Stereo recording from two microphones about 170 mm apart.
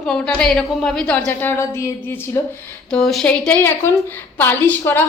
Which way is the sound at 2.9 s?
5° left (ahead or behind).